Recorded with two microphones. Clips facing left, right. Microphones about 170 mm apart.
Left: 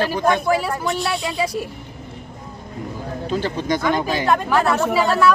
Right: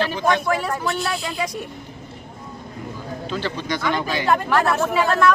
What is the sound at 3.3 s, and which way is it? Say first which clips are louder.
Speech: left 5 dB; 45° left (ahead or behind).